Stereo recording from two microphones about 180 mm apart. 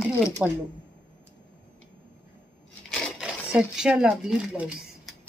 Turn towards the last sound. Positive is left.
turn(degrees=0)  # may be behind; listen again after turning